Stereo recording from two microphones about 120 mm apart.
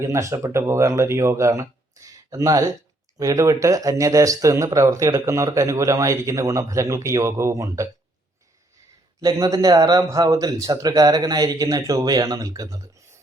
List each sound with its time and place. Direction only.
0.0 s speech: 25° right (ahead or behind)
9.2 s a man's voice: 30° right (ahead or behind)